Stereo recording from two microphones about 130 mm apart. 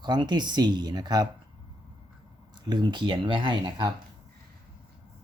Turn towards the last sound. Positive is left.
turn(degrees=-35)  # may be behind; listen again after turning